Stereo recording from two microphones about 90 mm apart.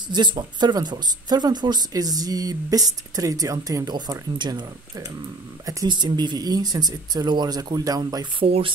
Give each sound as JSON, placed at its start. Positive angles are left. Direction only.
{"t": 0.1, "sound": "speech", "side_deg": -55}
{"t": 8.5, "sound": "speech", "side_deg": -90}